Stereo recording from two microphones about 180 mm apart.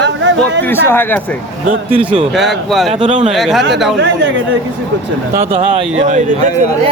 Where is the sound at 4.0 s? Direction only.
80° right.